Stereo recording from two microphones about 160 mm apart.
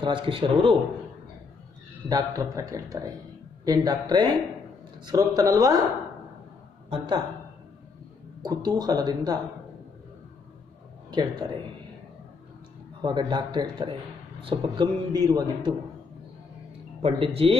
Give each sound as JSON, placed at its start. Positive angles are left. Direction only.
{"t": 0.0, "sound": "a man's voice", "side_deg": -30}
{"t": 2.0, "sound": "a man's voice", "side_deg": -20}
{"t": 6.9, "sound": "a man's voice", "side_deg": -25}
{"t": 8.4, "sound": "a man's voice", "side_deg": -25}
{"t": 13.0, "sound": "a man's voice", "side_deg": -30}
{"t": 17.0, "sound": "a man's voice", "side_deg": -35}